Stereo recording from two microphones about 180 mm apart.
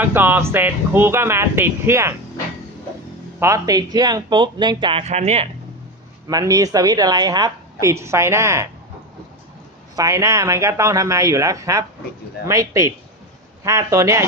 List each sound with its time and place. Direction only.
0.0 s speech: 10° right (ahead or behind)
3.4 s a woman's voice: 20° right (ahead or behind); by 5.5 s 35° right (ahead or behind)
6.2 s a woman's voice: 20° right (ahead or behind)
9.9 s speech: 20° right (ahead or behind)